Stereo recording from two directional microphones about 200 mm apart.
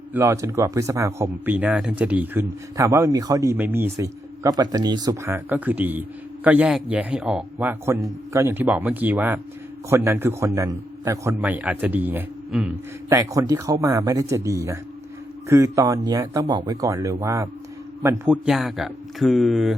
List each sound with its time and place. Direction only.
0.1 s speech: 15° right (ahead or behind)
13.1 s speech: 15° right (ahead or behind)
18.3 s speech: centre (ahead or behind)